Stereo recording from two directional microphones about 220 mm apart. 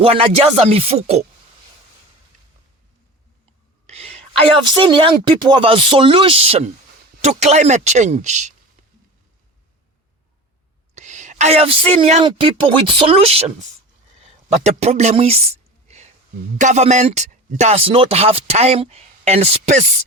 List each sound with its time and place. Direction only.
0.0 s speech: 25° right (ahead or behind)
3.8 s whispering: 30° right (ahead or behind)
4.6 s speech: 20° right (ahead or behind)
10.9 s a woman's voice: 35° right (ahead or behind)
14.2 s a sound: 30° right (ahead or behind)
16.6 s speech: 30° right (ahead or behind)